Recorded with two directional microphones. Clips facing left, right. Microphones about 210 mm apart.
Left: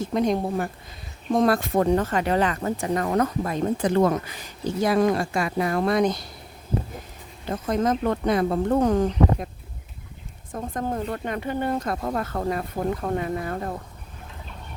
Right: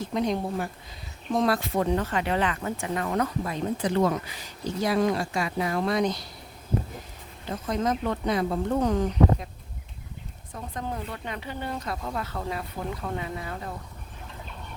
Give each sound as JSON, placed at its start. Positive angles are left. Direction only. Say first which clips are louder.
{"t": 0.0, "sound": "speech", "louder": "left 4 dB", "side_deg": 50}
{"t": 7.4, "sound": "speech", "louder": "left 4 dB", "side_deg": 50}
{"t": 10.5, "sound": "speech", "louder": "left 6 dB", "side_deg": 45}